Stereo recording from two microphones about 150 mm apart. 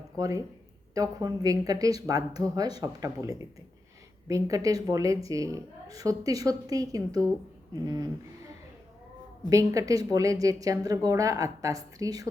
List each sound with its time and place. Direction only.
0.2 s a woman's voice: 20° right (ahead or behind)
9.5 s a woman's voice: 20° right (ahead or behind)